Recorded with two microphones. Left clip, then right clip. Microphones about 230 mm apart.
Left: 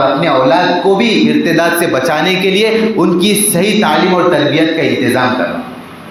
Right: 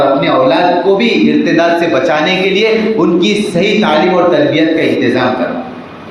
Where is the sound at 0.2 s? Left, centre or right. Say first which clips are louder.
Even; left.